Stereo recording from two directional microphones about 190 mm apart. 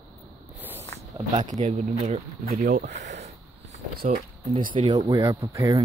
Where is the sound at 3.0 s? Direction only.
35° right (ahead or behind).